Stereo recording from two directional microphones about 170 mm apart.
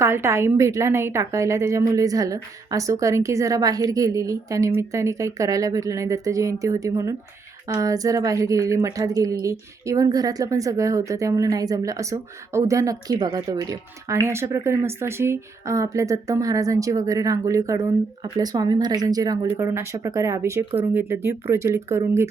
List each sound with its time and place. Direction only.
0.0 s a woman's voice: 15° right (ahead or behind)